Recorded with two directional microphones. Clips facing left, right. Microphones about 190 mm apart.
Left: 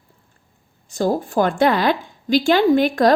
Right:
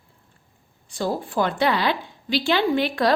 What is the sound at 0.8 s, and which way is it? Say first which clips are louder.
A woman's voice: left 6 dB; 45° left (ahead or behind).